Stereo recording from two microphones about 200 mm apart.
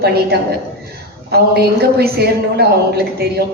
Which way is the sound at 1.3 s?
50° right (ahead or behind).